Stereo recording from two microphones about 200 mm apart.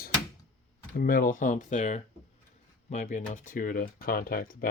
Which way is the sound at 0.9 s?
45° left (ahead or behind).